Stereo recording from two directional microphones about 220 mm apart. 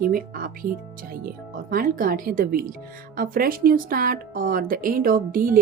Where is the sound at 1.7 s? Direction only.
40° right (ahead or behind).